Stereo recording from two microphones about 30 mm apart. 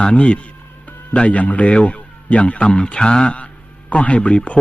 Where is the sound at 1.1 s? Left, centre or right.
Left.